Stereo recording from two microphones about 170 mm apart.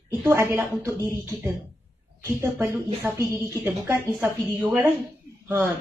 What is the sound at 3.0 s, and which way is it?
A woman's voice, 10° right (ahead or behind).